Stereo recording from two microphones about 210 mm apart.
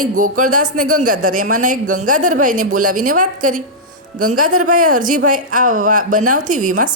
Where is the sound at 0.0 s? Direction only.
40° right (ahead or behind).